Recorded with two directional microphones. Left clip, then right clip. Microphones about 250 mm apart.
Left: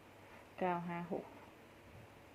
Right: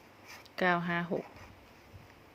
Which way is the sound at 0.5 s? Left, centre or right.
Right.